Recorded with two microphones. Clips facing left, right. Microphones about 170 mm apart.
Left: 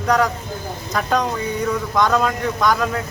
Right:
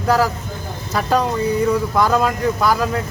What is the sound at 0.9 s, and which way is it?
Speech, 5° right (ahead or behind).